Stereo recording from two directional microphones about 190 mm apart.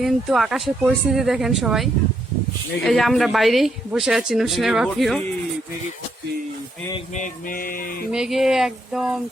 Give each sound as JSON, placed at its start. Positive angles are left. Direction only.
{"t": 0.0, "sound": "a woman's voice", "side_deg": 0}
{"t": 7.1, "sound": "a sound", "side_deg": 45}
{"t": 8.1, "sound": "a woman's voice", "side_deg": 0}